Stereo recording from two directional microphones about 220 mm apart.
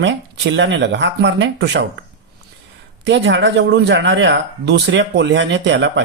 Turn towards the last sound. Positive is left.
turn(degrees=-55)  # may be behind; listen again after turning